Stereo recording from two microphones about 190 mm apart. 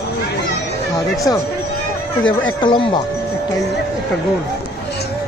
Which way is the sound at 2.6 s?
25° left (ahead or behind).